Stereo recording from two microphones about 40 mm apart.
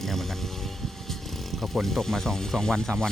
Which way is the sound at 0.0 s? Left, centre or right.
Centre.